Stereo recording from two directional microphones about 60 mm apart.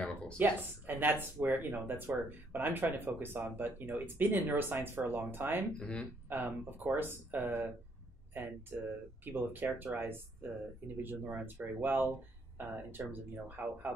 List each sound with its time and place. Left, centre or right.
0.0 s a sound: centre
0.4 s speech: right
5.7 s speech: centre
6.2 s speech: right
11.0 s speech: right